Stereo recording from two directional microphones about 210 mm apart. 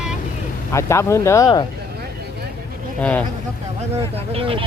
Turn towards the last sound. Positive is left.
turn(degrees=-25)  # may be behind; listen again after turning